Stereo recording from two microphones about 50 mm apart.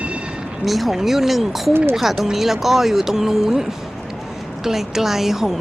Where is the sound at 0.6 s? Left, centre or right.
Centre.